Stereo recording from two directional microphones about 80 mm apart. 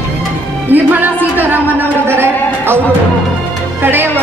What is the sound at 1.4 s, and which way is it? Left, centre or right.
Speech, right.